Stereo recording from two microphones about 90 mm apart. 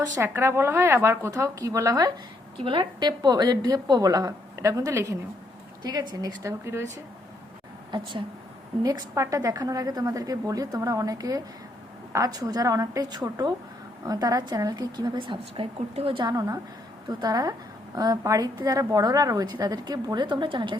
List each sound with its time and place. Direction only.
0.2 s a woman's voice: 30° right (ahead or behind)
2.6 s a woman's voice: 55° right (ahead or behind); by 5.1 s 35° right (ahead or behind)
5.8 s a woman's voice: 45° right (ahead or behind)
7.9 s a woman's voice: 60° right (ahead or behind)
8.8 s a woman's voice: 45° right (ahead or behind)
15.5 s a woman's voice: 85° right
16.2 s a woman's voice: 45° right (ahead or behind)
20.2 s a woman's voice: 65° right (ahead or behind)